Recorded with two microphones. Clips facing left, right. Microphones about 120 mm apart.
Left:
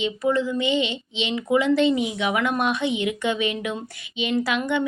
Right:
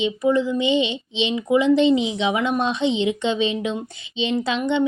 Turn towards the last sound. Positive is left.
turn(degrees=-25)  # may be behind; listen again after turning